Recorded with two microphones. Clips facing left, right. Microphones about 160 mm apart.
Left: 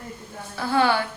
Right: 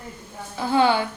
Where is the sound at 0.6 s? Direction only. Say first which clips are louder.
Right 2 dB; 20° right (ahead or behind).